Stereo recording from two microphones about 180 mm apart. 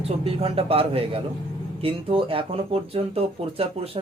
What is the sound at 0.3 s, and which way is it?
Speech, 35° right (ahead or behind).